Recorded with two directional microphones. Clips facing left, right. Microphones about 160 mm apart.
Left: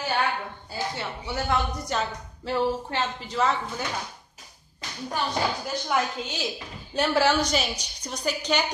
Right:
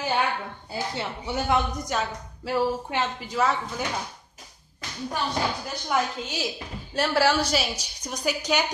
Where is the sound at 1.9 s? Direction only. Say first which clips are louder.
Even; 5° right (ahead or behind).